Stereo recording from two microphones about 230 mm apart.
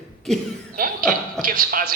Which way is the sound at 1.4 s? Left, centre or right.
Right.